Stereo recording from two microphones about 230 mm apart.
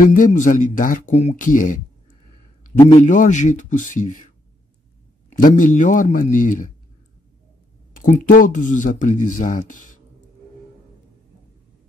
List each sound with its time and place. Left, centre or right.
0.1 s speech: left
2.8 s speech: left
5.4 s speech: left
7.9 s speech: left